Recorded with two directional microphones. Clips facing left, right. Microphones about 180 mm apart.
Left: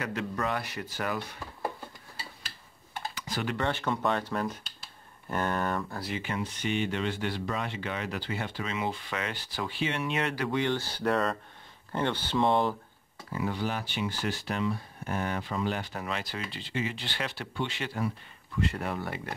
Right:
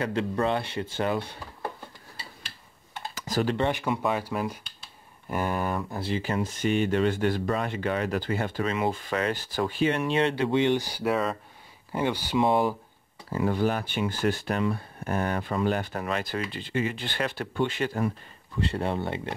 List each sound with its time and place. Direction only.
0.0 s speech: 30° right (ahead or behind)
3.2 s computer keyboard: 40° right (ahead or behind)
3.5 s speech: 15° right (ahead or behind)
5.9 s speech: 30° right (ahead or behind)
10.1 s speech: 25° right (ahead or behind); by 12.7 s 10° right (ahead or behind)
13.3 s speech: 50° right (ahead or behind)
18.6 s speech: 30° right (ahead or behind)